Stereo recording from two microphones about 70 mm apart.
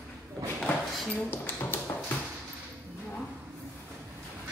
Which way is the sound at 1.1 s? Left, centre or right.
Left.